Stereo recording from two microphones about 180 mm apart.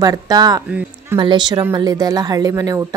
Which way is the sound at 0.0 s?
20° right (ahead or behind).